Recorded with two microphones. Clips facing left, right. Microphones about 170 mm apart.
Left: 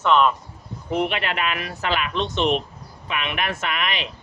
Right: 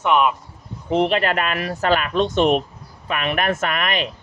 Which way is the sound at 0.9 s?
30° right (ahead or behind).